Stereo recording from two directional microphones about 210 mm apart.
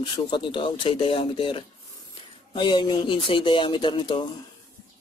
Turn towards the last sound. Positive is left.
turn(degrees=25)  # may be behind; listen again after turning